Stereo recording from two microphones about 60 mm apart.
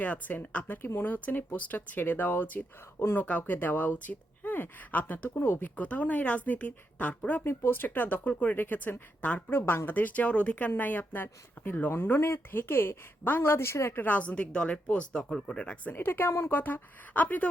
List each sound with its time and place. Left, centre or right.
0.0 s speech: left
5.6 s speech: left
7.4 s speech: left
9.5 s speech: left
13.9 s speech: left; by 15.5 s centre
15.5 s speech: centre
16.0 s speech: left